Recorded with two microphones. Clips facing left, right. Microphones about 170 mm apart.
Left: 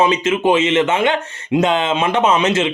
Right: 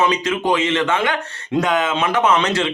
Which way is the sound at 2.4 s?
20° left (ahead or behind).